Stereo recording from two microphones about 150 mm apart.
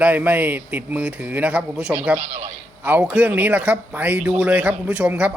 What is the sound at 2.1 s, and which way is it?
Speech, 50° right (ahead or behind).